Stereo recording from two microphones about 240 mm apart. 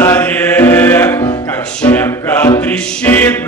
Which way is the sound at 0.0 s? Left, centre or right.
Centre.